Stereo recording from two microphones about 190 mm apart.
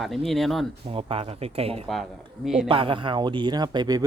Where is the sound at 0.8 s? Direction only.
30° right (ahead or behind).